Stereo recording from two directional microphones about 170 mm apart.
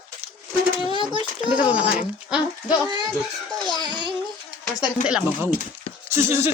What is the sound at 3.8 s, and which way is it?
Speech, 25° right (ahead or behind).